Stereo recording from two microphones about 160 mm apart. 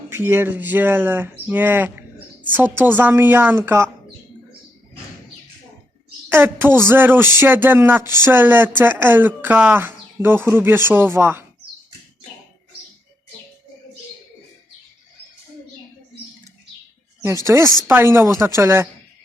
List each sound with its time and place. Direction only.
0.1 s speech: 15° right (ahead or behind)
6.2 s speech: 10° right (ahead or behind)
17.4 s speech: 20° right (ahead or behind)